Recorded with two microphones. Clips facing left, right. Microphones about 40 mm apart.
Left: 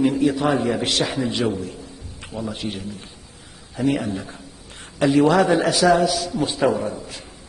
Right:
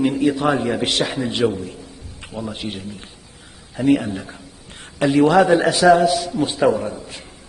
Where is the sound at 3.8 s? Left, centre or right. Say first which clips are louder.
Right 5 dB; right.